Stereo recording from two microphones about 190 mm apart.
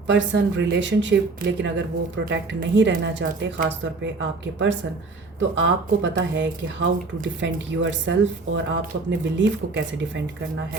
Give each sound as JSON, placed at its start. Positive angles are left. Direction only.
{"t": 0.1, "sound": "speech", "side_deg": -70}